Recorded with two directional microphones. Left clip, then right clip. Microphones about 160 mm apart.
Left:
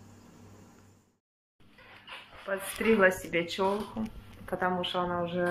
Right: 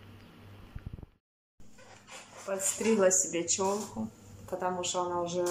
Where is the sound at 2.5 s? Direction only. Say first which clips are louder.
Left 1 dB; 5° right (ahead or behind).